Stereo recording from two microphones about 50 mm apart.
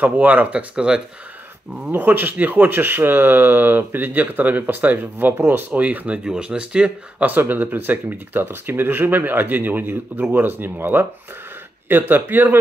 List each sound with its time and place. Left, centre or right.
0.0 s speech: right
1.9 s speech: right
5.8 s speech: right
6.2 s speech: centre
7.2 s speech: right